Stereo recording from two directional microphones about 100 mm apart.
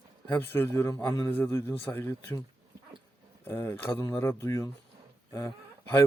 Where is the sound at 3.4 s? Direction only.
20° left (ahead or behind).